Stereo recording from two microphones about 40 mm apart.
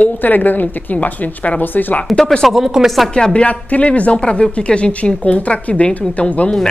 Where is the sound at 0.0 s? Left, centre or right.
Left.